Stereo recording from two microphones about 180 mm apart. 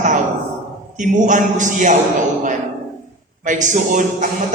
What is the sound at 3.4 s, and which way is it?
Speech, 45° right (ahead or behind).